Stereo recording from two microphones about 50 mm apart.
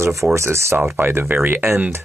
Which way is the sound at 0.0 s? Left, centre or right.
Right.